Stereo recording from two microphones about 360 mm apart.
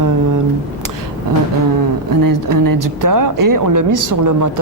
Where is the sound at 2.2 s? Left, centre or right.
Right.